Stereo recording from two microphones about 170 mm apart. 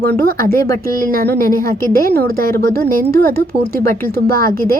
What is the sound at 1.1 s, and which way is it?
Speech, 60° right (ahead or behind).